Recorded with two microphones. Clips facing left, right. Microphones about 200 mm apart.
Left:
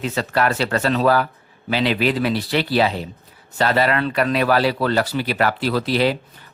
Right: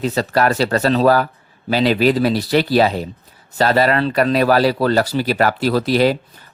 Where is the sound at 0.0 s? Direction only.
40° right (ahead or behind).